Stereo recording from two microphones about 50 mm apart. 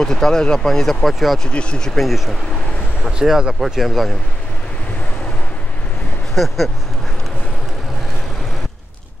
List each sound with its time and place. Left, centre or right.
0.0 s speech: centre
1.5 s speech: left
2.0 s speech: centre
3.1 s speech: centre
3.6 s speech: centre
6.3 s speech: centre